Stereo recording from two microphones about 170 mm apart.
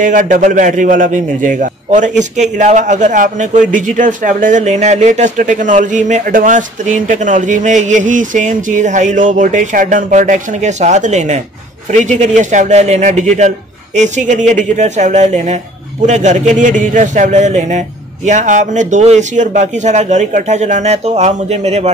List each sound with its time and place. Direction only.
0.0 s a man's voice: 50° right (ahead or behind)